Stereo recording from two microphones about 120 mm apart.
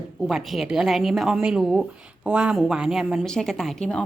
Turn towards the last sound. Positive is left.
turn(degrees=5)  # may be behind; listen again after turning